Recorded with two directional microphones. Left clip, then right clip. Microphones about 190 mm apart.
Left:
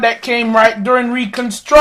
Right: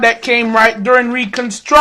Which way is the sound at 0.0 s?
40° right (ahead or behind).